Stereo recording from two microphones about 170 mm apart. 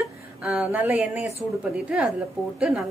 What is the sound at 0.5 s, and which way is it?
A woman's voice, 10° right (ahead or behind).